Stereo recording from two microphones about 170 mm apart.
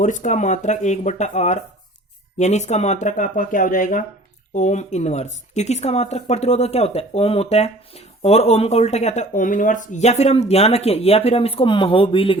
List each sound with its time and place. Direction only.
0.0 s speech: 45° left (ahead or behind)